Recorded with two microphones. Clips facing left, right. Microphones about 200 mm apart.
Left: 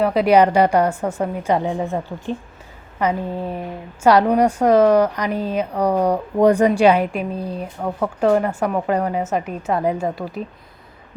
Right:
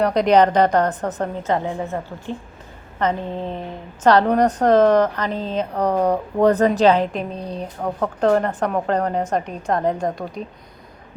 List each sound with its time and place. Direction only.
0.0 s a woman's voice: 5° left (ahead or behind)